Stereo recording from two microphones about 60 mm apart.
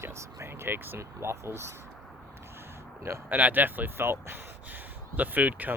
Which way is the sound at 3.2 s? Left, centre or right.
Right.